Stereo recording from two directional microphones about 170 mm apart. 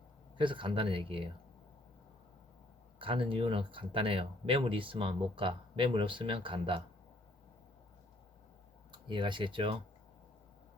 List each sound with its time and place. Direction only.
0.3 s speech: 30° right (ahead or behind)
3.0 s speech: 30° right (ahead or behind)
8.9 s speech: 30° right (ahead or behind)